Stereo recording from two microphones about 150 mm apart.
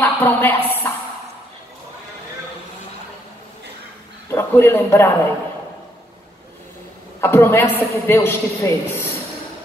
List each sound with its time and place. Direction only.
0.0 s a woman's voice: 15° left (ahead or behind)
4.3 s a man's voice: 15° left (ahead or behind)
7.2 s a woman's voice: 15° left (ahead or behind)